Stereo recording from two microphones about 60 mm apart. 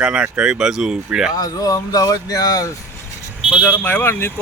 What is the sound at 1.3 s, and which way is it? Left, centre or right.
Speech, left.